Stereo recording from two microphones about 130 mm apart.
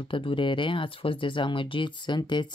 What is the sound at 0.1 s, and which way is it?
Speech, 40° left (ahead or behind).